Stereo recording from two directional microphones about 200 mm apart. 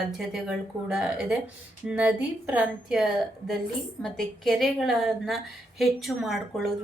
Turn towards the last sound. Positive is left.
turn(degrees=0)  # may be behind; listen again after turning